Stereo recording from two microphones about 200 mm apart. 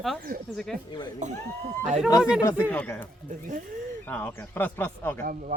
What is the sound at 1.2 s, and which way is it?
Speech, 35° right (ahead or behind).